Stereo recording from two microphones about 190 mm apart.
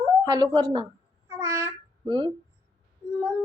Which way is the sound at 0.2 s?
20° right (ahead or behind).